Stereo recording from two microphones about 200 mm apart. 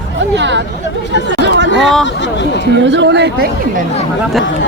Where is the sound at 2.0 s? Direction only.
65° left (ahead or behind).